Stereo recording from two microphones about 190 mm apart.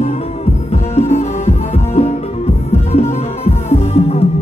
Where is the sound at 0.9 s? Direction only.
35° left (ahead or behind).